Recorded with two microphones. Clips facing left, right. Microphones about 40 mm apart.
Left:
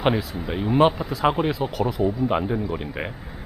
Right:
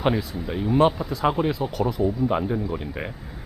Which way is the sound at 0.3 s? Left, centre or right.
Centre.